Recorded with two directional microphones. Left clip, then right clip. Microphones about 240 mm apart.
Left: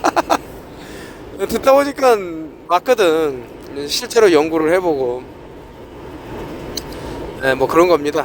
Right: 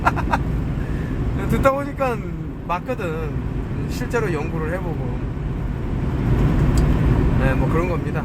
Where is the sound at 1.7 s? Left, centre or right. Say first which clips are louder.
Left 10 dB; left.